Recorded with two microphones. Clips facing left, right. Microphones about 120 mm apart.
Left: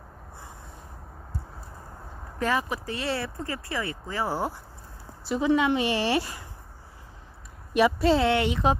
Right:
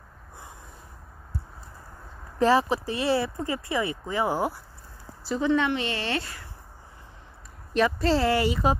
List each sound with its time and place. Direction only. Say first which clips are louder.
2.3 s speech: right 6 dB; 30° right (ahead or behind)
5.2 s a woman's voice: left 1 dB; 5° left (ahead or behind)
7.7 s speech: left 2 dB; 5° left (ahead or behind)